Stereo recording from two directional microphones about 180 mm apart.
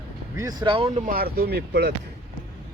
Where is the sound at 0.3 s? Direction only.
20° right (ahead or behind).